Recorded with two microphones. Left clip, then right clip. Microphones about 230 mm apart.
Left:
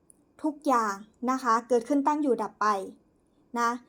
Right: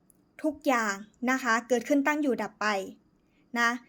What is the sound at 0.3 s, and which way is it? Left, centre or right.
A woman's voice, right.